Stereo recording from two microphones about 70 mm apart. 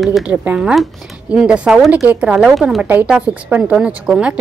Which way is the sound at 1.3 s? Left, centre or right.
Centre.